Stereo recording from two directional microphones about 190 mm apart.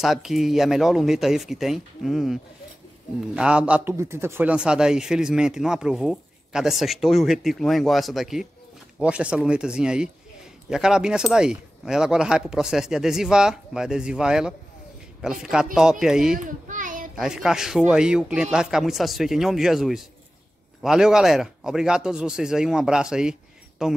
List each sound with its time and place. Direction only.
0.0 s a man's voice: centre (ahead or behind)
16.3 s a child's voice: 45° right (ahead or behind)
17.2 s a man's voice: centre (ahead or behind)